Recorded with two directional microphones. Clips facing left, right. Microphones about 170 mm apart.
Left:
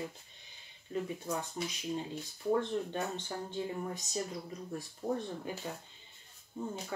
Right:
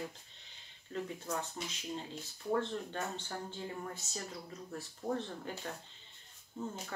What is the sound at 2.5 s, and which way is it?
Speech, 15° left (ahead or behind).